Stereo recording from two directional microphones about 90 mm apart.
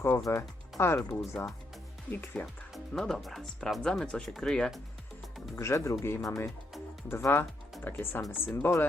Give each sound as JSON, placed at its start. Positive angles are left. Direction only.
{"t": 0.3, "sound": "speech", "side_deg": 30}
{"t": 2.7, "sound": "speech", "side_deg": 0}
{"t": 5.5, "sound": "speech", "side_deg": 35}